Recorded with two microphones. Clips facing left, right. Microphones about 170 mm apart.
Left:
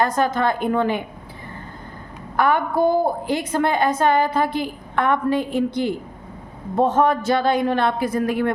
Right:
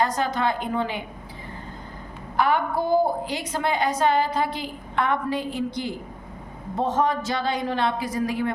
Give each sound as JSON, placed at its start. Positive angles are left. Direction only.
{"t": 0.0, "sound": "a woman's voice", "side_deg": 50}
{"t": 2.3, "sound": "a woman's voice", "side_deg": 55}